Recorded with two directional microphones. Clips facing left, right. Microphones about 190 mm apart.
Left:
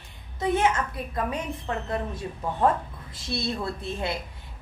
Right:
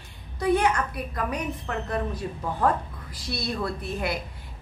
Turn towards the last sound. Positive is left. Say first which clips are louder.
# right 1 dB
turn(degrees=25)  # may be behind; listen again after turning